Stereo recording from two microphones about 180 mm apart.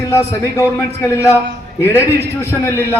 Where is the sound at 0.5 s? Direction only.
15° left (ahead or behind).